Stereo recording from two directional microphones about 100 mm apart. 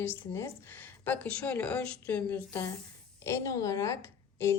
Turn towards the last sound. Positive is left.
turn(degrees=25)  # may be behind; listen again after turning